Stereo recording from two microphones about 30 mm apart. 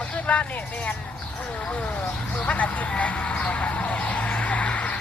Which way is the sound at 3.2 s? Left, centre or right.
Left.